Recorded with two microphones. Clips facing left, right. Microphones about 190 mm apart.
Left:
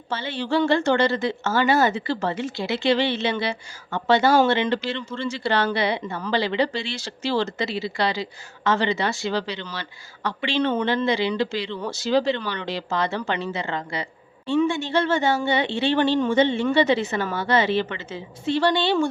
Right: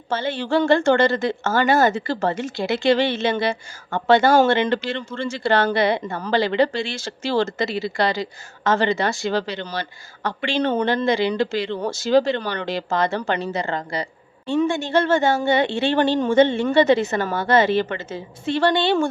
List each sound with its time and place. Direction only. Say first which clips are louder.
0.1 s a woman's voice: right 3 dB; 50° right (ahead or behind)